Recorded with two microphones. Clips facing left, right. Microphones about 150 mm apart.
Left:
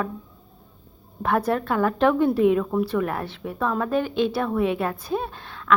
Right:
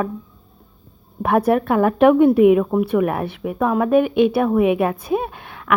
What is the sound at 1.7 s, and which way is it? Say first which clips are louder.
A woman's voice: right 6 dB; 25° right (ahead or behind).